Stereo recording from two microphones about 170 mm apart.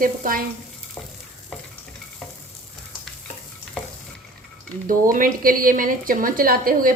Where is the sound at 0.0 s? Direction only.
55° right (ahead or behind).